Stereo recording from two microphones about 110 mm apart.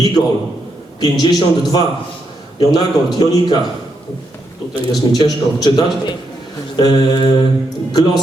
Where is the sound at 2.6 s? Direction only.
40° left (ahead or behind).